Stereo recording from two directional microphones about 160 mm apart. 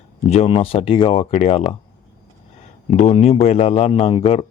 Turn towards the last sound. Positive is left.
turn(degrees=35)  # may be behind; listen again after turning